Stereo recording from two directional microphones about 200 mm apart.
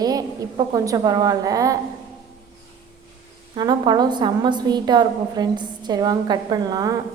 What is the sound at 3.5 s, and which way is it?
A woman's voice, 20° right (ahead or behind).